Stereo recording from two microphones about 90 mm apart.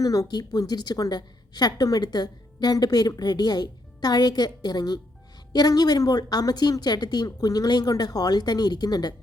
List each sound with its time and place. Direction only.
0.0 s a woman's voice: 40° left (ahead or behind)